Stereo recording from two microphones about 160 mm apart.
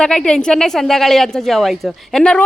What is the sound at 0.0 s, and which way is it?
A woman's voice, 5° left (ahead or behind).